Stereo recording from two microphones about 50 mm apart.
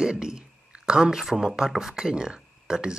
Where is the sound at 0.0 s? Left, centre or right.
Centre.